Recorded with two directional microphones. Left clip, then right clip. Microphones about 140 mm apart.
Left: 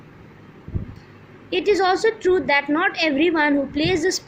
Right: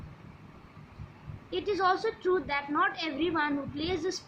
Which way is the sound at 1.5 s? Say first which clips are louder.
Left 9 dB; 35° left (ahead or behind).